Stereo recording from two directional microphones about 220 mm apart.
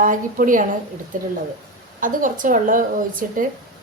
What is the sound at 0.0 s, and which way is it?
Speech, 35° right (ahead or behind).